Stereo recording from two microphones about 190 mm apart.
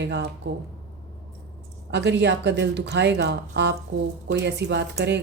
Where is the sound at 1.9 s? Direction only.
65° right (ahead or behind).